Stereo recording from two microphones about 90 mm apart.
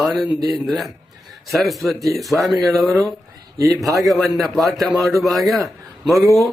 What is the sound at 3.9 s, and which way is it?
A man's voice, centre (ahead or behind).